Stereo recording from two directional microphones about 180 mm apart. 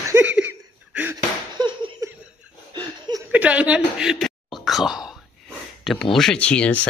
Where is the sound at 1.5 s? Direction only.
25° right (ahead or behind).